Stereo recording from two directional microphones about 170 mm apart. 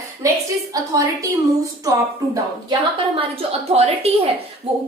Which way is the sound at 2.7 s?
35° right (ahead or behind).